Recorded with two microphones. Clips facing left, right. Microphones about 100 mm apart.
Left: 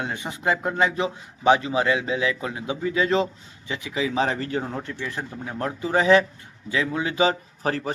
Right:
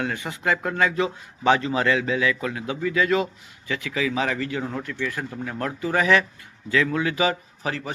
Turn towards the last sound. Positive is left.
turn(degrees=40)  # may be behind; listen again after turning